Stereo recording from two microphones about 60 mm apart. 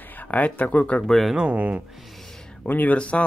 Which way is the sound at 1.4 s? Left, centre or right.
Right.